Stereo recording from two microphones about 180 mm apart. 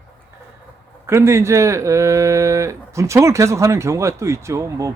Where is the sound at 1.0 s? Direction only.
15° right (ahead or behind).